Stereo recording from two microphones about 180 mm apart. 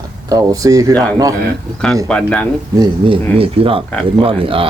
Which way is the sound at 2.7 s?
25° right (ahead or behind).